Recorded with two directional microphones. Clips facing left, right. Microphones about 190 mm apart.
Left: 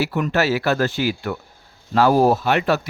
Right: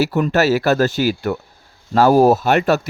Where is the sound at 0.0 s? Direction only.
40° right (ahead or behind).